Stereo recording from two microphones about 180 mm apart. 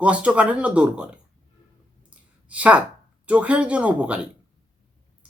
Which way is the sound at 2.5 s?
5° right (ahead or behind).